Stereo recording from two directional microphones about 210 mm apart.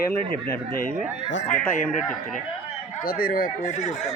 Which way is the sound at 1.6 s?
5° left (ahead or behind).